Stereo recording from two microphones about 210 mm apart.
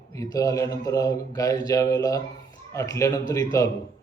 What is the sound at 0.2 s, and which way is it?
Speech, 15° left (ahead or behind).